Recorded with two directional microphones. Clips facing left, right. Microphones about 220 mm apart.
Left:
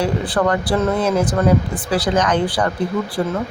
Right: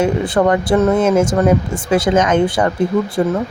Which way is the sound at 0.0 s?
20° right (ahead or behind).